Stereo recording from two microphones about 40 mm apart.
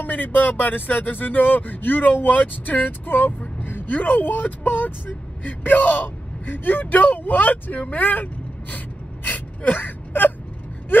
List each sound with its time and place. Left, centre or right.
0.0 s speech: left
7.9 s gasp: left